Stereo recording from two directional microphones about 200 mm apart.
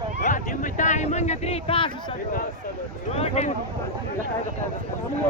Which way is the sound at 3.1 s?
30° left (ahead or behind).